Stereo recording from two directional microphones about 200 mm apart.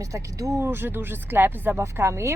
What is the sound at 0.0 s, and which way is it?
Speech, 15° right (ahead or behind).